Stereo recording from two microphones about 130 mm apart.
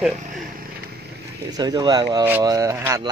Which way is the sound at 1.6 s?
30° right (ahead or behind).